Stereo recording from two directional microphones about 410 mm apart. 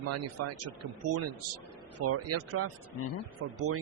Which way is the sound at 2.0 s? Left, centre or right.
Right.